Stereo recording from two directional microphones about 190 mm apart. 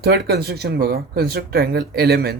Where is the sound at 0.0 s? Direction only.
60° right (ahead or behind).